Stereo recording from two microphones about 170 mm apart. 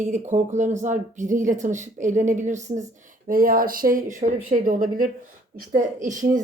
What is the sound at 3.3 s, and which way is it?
Speech, 55° right (ahead or behind).